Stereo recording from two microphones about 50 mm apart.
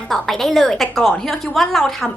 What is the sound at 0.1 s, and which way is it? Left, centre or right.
A woman's voice, centre.